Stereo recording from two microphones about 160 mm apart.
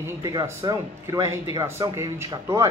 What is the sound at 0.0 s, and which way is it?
Speech, 25° right (ahead or behind).